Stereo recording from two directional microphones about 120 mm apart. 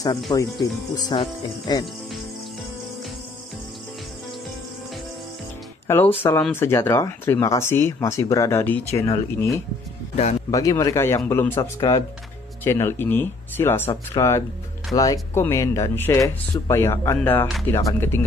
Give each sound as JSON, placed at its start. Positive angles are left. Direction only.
{"t": 0.0, "sound": "speech", "side_deg": 30}
{"t": 5.9, "sound": "speech", "side_deg": 20}
{"t": 10.5, "sound": "speech", "side_deg": 30}